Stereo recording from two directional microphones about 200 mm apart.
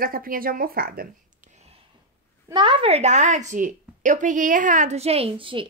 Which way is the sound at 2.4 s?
25° right (ahead or behind).